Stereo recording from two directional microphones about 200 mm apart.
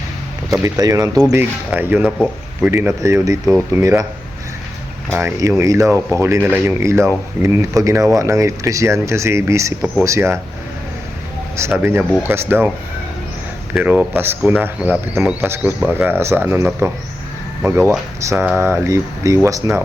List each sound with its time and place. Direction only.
0.5 s speech: 15° right (ahead or behind)
5.1 s speech: 15° right (ahead or behind)
11.5 s speech: 10° right (ahead or behind)
13.7 s speech: 10° right (ahead or behind)